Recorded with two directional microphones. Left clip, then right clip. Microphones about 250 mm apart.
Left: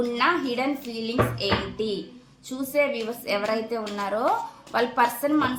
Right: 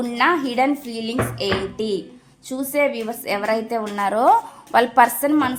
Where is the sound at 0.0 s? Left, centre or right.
Right.